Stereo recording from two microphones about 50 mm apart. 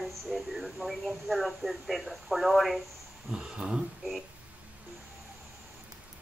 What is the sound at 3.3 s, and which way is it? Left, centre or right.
Speech, centre.